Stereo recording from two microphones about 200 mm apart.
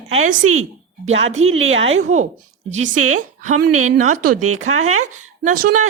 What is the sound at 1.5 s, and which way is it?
Speech, 80° right.